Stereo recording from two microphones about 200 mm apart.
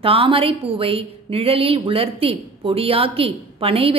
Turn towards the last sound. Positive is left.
turn(degrees=-30)  # may be behind; listen again after turning